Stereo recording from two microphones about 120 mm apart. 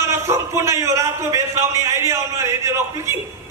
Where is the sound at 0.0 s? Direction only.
20° right (ahead or behind).